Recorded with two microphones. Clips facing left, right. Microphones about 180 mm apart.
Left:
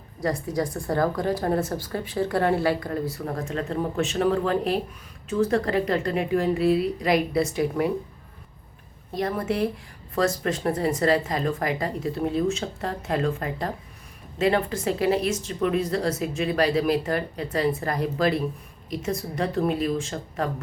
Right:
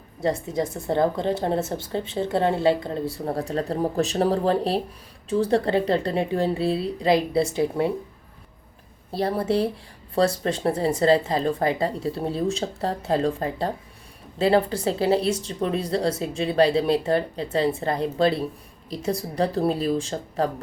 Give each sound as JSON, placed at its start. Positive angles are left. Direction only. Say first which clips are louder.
{"t": 0.2, "sound": "a woman's voice", "louder": "right 1 dB", "side_deg": -25}
{"t": 9.1, "sound": "a woman's voice", "louder": "right 3 dB", "side_deg": -30}